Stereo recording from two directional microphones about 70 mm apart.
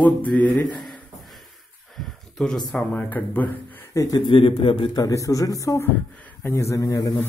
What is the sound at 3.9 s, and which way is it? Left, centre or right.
Speech, left.